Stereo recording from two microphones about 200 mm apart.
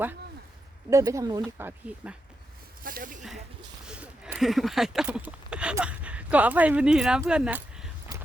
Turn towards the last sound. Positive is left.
turn(degrees=-5)  # may be behind; listen again after turning